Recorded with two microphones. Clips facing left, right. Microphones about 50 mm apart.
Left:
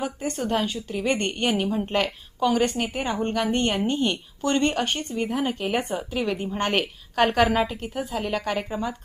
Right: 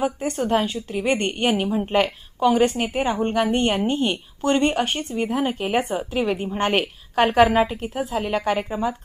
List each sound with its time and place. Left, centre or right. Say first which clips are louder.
0.4 s a woman's voice: right 4 dB; centre